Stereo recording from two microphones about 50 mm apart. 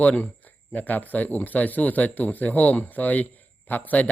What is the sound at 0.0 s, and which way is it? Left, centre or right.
Speech, left.